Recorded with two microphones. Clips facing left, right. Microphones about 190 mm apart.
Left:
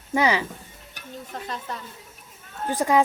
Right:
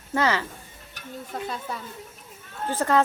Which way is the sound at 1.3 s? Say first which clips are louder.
Right 2 dB; 5° right (ahead or behind).